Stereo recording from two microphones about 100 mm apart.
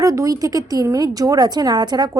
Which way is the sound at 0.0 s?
35° right (ahead or behind).